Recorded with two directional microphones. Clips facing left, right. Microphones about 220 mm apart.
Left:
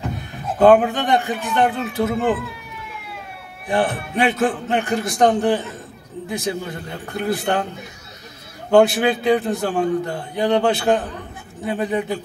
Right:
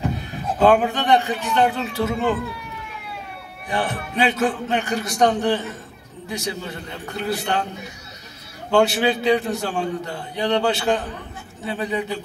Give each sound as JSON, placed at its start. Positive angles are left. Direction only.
{"t": 0.2, "sound": "speech", "side_deg": 55}
{"t": 4.3, "sound": "a man's voice", "side_deg": 50}
{"t": 8.6, "sound": "a man's voice", "side_deg": 55}